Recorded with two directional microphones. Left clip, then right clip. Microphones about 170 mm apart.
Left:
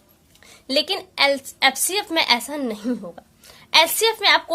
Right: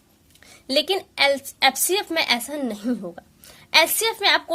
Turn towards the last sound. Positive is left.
turn(degrees=-30)  # may be behind; listen again after turning